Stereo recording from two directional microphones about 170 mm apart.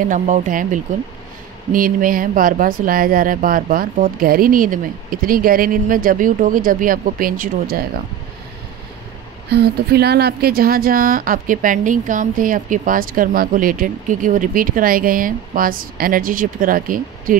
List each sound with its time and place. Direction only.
0.1 s a woman's voice: 50° right (ahead or behind)
9.5 s a woman's voice: 70° right (ahead or behind); by 17.4 s 55° right (ahead or behind)